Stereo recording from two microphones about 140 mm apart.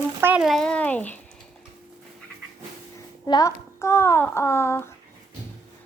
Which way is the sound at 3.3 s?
25° left (ahead or behind).